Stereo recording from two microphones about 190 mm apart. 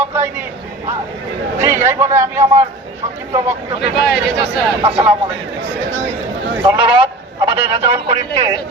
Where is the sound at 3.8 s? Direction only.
60° left (ahead or behind).